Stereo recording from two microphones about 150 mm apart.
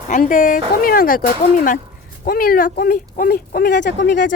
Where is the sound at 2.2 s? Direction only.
75° left (ahead or behind).